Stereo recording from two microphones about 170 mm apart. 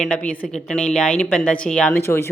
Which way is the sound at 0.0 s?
5° left (ahead or behind).